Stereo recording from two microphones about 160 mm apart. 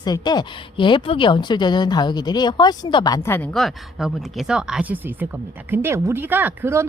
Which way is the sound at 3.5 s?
Centre (ahead or behind).